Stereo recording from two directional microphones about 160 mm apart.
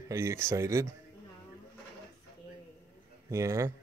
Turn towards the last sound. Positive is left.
turn(degrees=-20)  # may be behind; listen again after turning